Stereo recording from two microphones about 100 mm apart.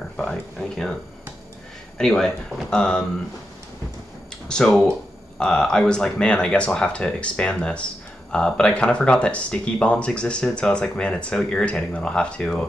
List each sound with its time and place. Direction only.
0.2 s speech: centre (ahead or behind)
2.0 s speech: 5° left (ahead or behind)
4.5 s speech: 5° left (ahead or behind)